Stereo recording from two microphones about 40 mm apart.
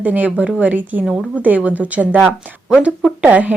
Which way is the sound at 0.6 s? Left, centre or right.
Right.